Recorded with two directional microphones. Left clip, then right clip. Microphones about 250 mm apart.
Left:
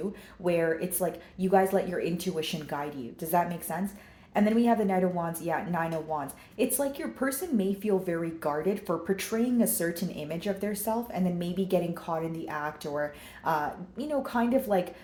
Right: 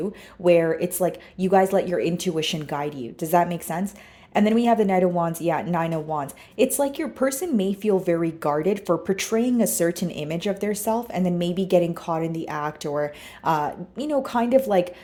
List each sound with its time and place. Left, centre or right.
0.4 s speech: right